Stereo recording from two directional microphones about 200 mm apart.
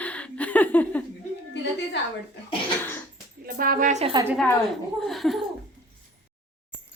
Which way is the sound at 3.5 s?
45° right (ahead or behind).